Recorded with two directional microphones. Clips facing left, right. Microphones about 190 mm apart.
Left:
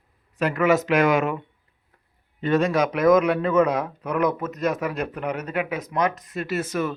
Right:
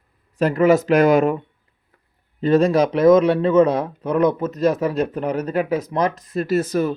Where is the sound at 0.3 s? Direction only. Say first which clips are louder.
Right 5 dB; 35° right (ahead or behind).